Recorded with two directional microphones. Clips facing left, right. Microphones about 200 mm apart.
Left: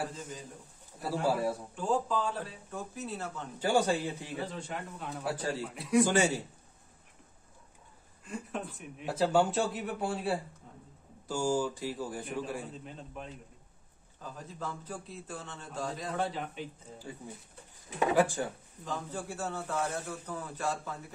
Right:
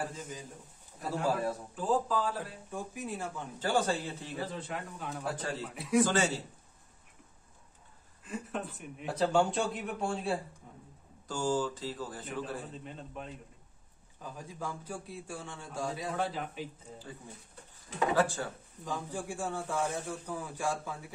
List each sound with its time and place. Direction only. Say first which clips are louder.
0.1 s a man's voice: even; 10° right (ahead or behind)
1.0 s a man's voice: left 2 dB; 10° left (ahead or behind)
1.8 s speech: right 1 dB; centre (ahead or behind)
2.7 s a man's voice: right 1 dB; 15° right (ahead or behind)
3.5 s a man's voice: left 3 dB; 15° left (ahead or behind)
4.4 s speech: even; centre (ahead or behind)
5.8 s speech: left 1 dB; centre (ahead or behind)
6.0 s a man's voice: left 2 dB; 15° left (ahead or behind)
8.3 s a man's voice: even; centre (ahead or behind)
12.8 s speech: right 1 dB; centre (ahead or behind)
14.2 s a man's voice: even; 10° right (ahead or behind)
17.9 s a man's voice: left 2 dB; 15° left (ahead or behind)
18.9 s a man's voice: even; 15° right (ahead or behind)